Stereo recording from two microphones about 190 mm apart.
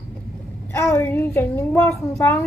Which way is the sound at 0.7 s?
10° left (ahead or behind).